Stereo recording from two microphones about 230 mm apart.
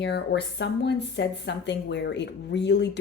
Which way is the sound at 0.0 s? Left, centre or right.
Left.